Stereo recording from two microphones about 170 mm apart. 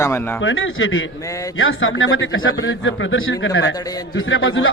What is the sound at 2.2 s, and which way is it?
A man's voice, 90° left.